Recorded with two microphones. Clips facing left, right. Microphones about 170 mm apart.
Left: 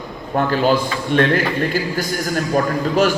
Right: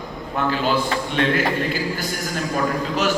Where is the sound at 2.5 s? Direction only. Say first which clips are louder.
Left 5 dB; 40° left (ahead or behind).